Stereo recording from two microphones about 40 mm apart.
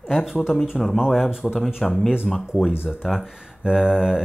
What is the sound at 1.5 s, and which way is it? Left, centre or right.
Speech, centre.